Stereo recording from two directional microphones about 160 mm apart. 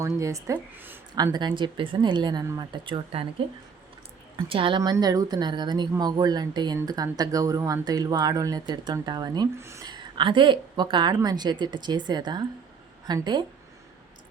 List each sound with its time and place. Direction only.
0.0 s speech: 20° right (ahead or behind)
1.1 s speech: 25° right (ahead or behind)
4.4 s speech: 35° right (ahead or behind)